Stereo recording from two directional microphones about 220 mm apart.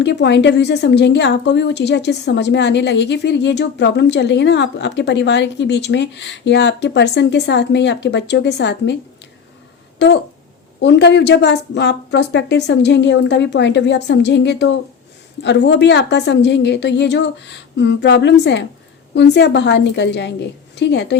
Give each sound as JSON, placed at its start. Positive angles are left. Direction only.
{"t": 0.0, "sound": "a woman's voice", "side_deg": 50}
{"t": 10.8, "sound": "a woman's voice", "side_deg": 50}